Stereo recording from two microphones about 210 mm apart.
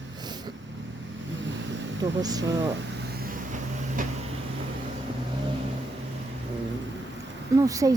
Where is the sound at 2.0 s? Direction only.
20° right (ahead or behind).